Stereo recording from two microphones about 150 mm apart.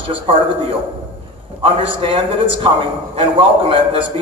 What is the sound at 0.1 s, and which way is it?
A man's voice, 35° right (ahead or behind).